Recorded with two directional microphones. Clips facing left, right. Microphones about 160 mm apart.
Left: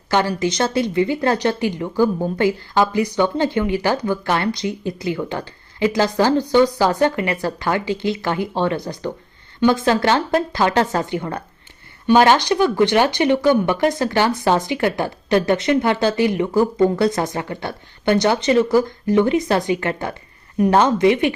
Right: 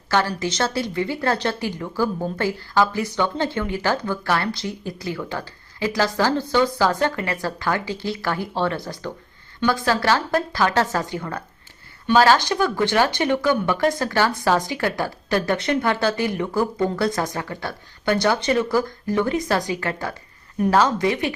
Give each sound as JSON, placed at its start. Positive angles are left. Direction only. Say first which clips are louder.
{"t": 0.1, "sound": "a woman's voice", "louder": "left 3 dB", "side_deg": 15}